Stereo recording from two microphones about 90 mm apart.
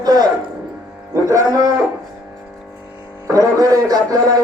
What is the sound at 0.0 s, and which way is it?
Music, 50° right (ahead or behind).